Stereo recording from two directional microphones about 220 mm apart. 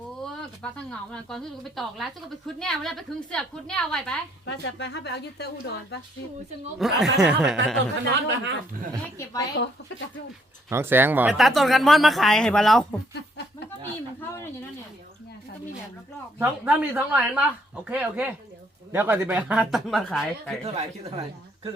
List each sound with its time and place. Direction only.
0.3 s speech: 5° left (ahead or behind)
4.4 s a woman's voice: 55° left (ahead or behind)
6.7 s speech: centre (ahead or behind)
8.0 s speech: 50° right (ahead or behind)
9.1 s a woman's voice: 15° left (ahead or behind)
10.7 s speech: 10° right (ahead or behind)
16.4 s speech: 5° right (ahead or behind)
20.7 s speech: 25° right (ahead or behind)